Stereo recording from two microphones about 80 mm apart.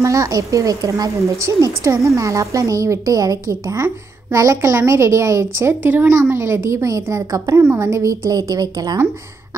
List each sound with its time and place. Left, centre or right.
0.0 s a woman's voice: right
7.6 s a woman's voice: right